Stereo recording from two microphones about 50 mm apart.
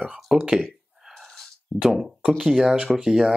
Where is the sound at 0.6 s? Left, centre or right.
Centre.